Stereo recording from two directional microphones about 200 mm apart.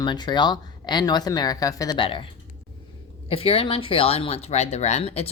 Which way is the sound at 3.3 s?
30° left (ahead or behind).